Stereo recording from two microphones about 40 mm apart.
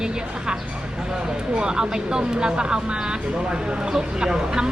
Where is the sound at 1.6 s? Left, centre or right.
Centre.